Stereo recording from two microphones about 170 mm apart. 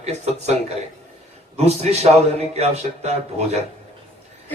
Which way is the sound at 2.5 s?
40° right (ahead or behind).